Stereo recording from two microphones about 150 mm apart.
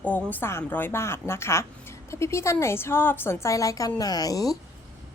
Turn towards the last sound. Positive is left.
turn(degrees=25)  # may be behind; listen again after turning